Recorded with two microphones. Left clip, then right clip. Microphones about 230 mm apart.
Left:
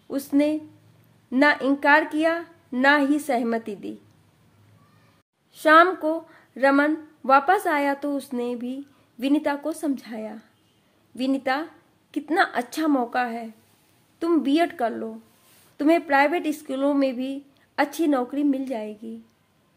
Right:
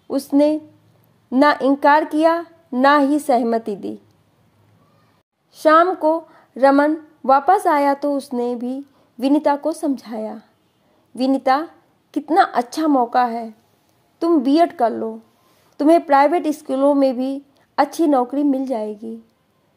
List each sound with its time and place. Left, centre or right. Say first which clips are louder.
0.1 s a woman's voice: right 6 dB; centre
5.5 s a woman's voice: right 2 dB; centre